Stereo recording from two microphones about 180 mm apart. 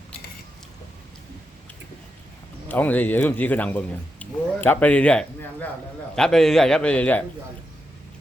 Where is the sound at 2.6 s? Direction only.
10° left (ahead or behind).